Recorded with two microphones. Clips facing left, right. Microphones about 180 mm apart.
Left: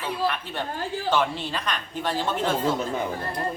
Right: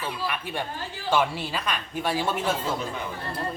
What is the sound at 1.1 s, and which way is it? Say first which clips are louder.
Speech: right 2 dB; 10° right (ahead or behind).